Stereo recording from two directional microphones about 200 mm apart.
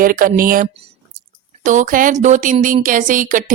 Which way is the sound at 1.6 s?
40° right (ahead or behind).